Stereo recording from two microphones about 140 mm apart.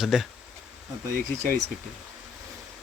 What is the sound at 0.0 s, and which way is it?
Speech, 5° right (ahead or behind).